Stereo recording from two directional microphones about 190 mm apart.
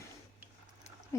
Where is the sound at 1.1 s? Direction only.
15° left (ahead or behind).